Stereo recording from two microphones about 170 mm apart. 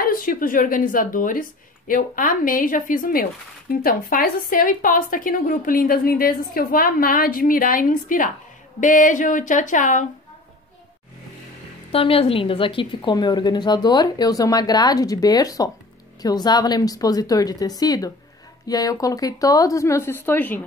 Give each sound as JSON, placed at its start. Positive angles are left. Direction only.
{"t": 0.0, "sound": "a woman's voice", "side_deg": 55}
{"t": 11.9, "sound": "a woman's voice", "side_deg": 35}